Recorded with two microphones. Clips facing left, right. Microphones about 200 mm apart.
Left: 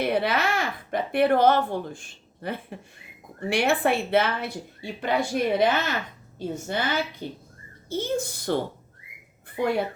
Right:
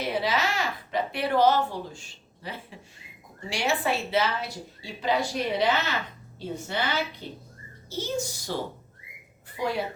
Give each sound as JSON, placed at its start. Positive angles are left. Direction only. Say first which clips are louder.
{"t": 0.0, "sound": "a woman's voice", "louder": "left 3 dB", "side_deg": 60}
{"t": 9.6, "sound": "a woman's voice", "louder": "left 4 dB", "side_deg": 55}